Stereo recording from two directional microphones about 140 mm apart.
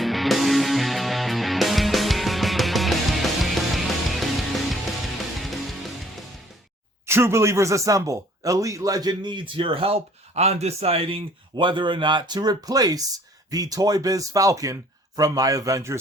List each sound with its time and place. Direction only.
0.0 s music: centre (ahead or behind)
7.1 s speech: 20° right (ahead or behind)